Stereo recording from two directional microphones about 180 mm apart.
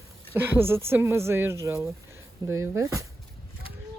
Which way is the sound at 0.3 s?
10° right (ahead or behind).